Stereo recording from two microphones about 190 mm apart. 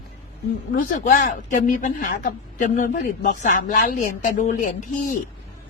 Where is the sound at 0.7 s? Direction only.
45° left (ahead or behind).